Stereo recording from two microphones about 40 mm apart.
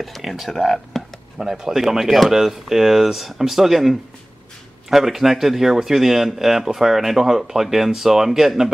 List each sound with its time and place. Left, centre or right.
0.0 s speech: centre
1.4 s speech: centre